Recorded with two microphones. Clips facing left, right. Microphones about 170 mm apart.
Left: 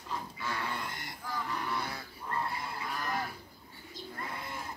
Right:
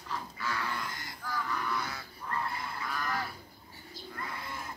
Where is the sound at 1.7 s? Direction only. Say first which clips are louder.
Even; 30° left (ahead or behind).